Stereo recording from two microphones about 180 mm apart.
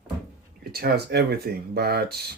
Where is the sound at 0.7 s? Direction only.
60° right (ahead or behind).